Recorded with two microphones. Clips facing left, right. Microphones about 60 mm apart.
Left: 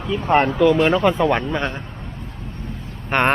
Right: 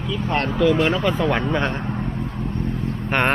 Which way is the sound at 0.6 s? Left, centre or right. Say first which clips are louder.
Right 2 dB; centre.